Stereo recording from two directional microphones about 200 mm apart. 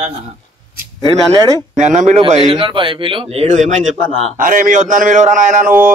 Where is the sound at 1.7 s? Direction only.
35° right (ahead or behind).